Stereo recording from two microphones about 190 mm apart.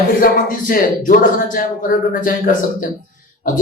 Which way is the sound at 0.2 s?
50° left (ahead or behind).